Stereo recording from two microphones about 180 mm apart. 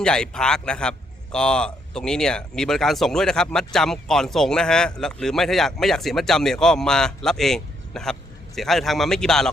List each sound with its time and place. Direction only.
0.0 s a man's voice: 5° left (ahead or behind)